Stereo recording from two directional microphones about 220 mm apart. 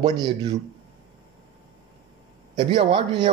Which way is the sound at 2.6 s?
20° right (ahead or behind).